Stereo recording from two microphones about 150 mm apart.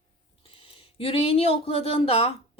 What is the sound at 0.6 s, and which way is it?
Speech, 40° left (ahead or behind).